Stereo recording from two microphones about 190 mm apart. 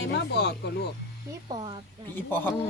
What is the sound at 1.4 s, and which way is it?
Speech, 25° right (ahead or behind).